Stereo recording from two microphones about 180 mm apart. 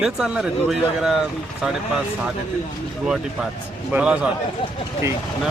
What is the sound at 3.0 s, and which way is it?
A man's voice, 5° right (ahead or behind).